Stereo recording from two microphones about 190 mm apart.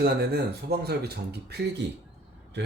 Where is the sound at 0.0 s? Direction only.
55° right (ahead or behind).